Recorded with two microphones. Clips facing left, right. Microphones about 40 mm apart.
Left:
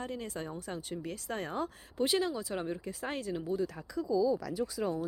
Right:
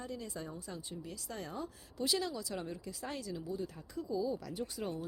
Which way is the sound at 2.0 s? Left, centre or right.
Left.